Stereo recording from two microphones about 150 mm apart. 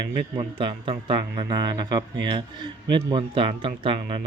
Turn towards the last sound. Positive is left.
turn(degrees=-35)  # may be behind; listen again after turning